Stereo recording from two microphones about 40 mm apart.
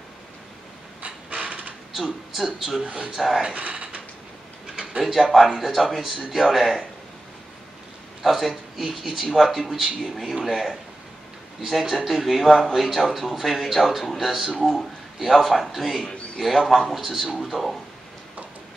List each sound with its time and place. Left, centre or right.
1.0 s mechanisms: right
2.3 s speech: centre
3.5 s creak: right
5.0 s speech: centre
8.2 s speech: centre
11.8 s speech: centre
14.6 s speech: centre
15.1 s speech: centre